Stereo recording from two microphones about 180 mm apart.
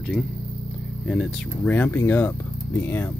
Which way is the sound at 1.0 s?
5° left (ahead or behind).